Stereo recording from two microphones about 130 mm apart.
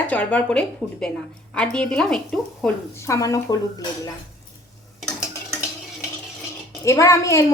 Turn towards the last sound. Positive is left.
turn(degrees=25)  # may be behind; listen again after turning